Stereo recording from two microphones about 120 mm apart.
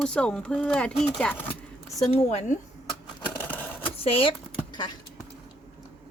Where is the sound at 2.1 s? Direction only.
60° left (ahead or behind).